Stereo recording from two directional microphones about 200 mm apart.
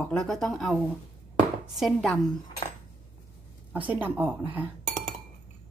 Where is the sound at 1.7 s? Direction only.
Centre (ahead or behind).